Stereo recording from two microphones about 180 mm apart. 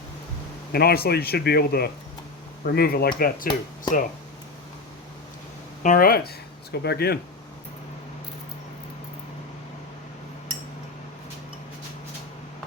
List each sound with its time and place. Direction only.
0.7 s speech: 60° left (ahead or behind)
5.8 s speech: 50° left (ahead or behind)